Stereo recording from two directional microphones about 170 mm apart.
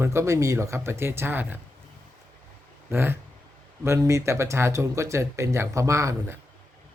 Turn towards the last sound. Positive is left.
turn(degrees=-15)  # may be behind; listen again after turning